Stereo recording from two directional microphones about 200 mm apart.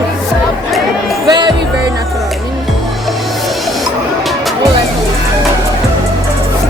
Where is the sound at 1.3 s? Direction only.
20° right (ahead or behind).